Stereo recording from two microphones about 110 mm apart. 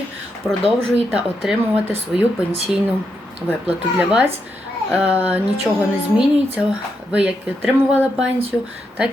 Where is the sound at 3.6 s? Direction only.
15° right (ahead or behind).